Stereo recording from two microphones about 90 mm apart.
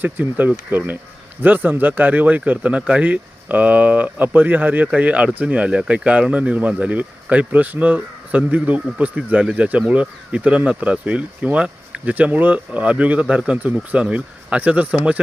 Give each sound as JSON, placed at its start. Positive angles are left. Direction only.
{"t": 0.0, "sound": "speech", "side_deg": -20}